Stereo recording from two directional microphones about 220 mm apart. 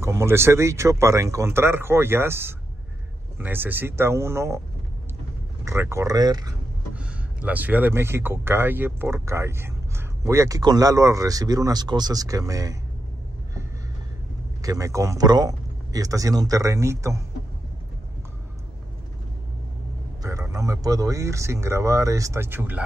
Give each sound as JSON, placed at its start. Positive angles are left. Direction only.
{"t": 0.0, "sound": "speech", "side_deg": -10}
{"t": 5.7, "sound": "speech", "side_deg": -10}
{"t": 14.6, "sound": "speech", "side_deg": -15}
{"t": 20.2, "sound": "speech", "side_deg": -15}